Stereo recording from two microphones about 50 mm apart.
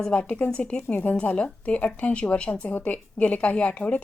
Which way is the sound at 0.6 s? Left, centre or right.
Centre.